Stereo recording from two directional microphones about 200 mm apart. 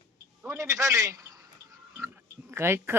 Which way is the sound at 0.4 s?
15° right (ahead or behind).